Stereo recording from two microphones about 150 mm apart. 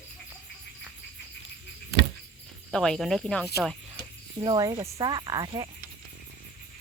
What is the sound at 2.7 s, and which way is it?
Speech, 5° left (ahead or behind).